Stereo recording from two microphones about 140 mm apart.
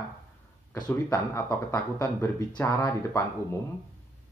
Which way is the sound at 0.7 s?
30° left (ahead or behind).